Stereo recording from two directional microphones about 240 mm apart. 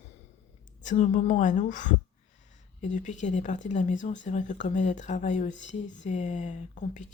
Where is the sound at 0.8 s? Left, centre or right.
Left.